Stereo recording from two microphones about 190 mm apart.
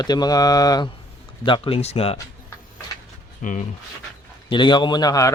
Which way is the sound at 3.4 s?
45° left (ahead or behind).